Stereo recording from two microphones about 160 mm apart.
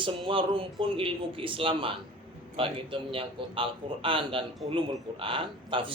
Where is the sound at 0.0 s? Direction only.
30° right (ahead or behind).